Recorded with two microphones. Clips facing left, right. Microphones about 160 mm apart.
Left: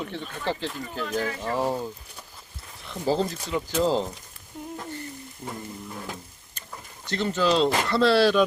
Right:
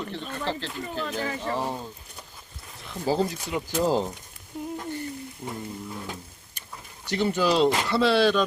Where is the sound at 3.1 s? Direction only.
10° right (ahead or behind).